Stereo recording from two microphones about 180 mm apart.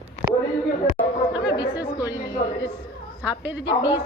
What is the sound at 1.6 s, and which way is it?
Speech, 20° left (ahead or behind).